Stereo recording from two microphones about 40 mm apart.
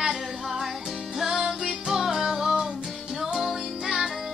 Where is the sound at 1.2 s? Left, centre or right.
Centre.